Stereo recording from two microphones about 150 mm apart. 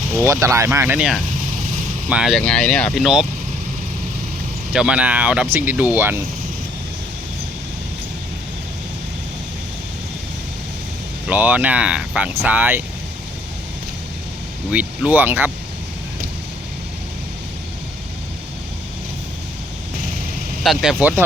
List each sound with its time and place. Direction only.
0.2 s speech: 20° right (ahead or behind)
0.9 s speech: 5° right (ahead or behind)
4.7 s speech: 5° right (ahead or behind)
11.3 s speech: 10° right (ahead or behind)
14.7 s speech: 10° right (ahead or behind)
20.7 s speech: 5° right (ahead or behind)